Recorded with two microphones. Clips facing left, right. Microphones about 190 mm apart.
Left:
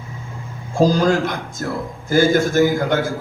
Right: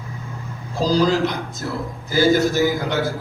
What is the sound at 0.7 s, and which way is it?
A man's voice, 50° left (ahead or behind).